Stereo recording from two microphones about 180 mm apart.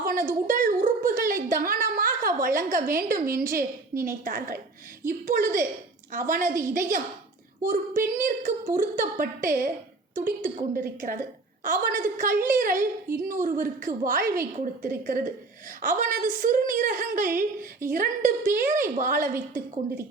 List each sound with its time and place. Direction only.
0.0 s a sound: 50° right (ahead or behind)
1.3 s a woman's voice: 50° right (ahead or behind)
3.9 s a woman's voice: 15° right (ahead or behind)
4.2 s a woman's voice: 55° right (ahead or behind)
6.5 s a woman's voice: 15° right (ahead or behind)
7.6 s a woman's voice: 45° right (ahead or behind)